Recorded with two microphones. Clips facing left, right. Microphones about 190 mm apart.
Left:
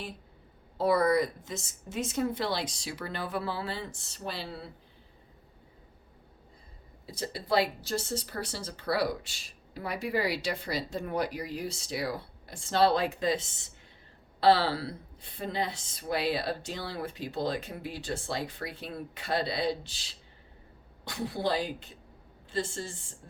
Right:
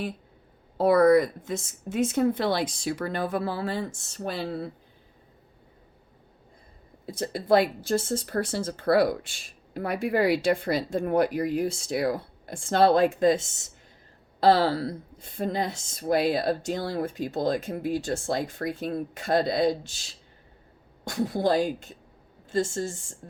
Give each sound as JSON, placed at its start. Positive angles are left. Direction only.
{"t": 0.8, "sound": "speech", "side_deg": -55}
{"t": 7.0, "sound": "speech", "side_deg": -50}